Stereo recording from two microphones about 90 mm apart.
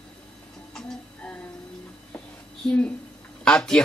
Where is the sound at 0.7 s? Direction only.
15° left (ahead or behind).